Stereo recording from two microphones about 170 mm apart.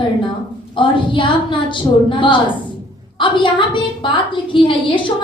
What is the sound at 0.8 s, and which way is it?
Speech, 30° left (ahead or behind).